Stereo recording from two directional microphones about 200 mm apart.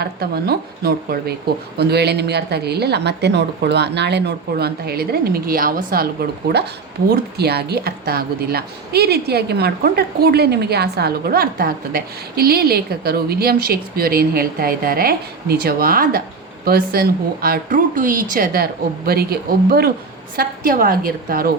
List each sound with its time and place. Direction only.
0.0 s a woman's voice: 50° right (ahead or behind)
7.1 s a woman's voice: 55° right (ahead or behind)